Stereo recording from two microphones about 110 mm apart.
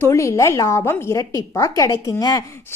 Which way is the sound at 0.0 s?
25° left (ahead or behind).